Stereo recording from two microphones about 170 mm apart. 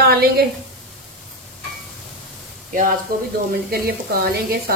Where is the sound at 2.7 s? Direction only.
50° right (ahead or behind).